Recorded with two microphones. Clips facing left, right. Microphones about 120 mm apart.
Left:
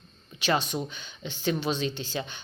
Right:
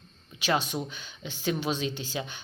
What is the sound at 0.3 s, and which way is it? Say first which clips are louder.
Speech: left 1 dB; 10° right (ahead or behind).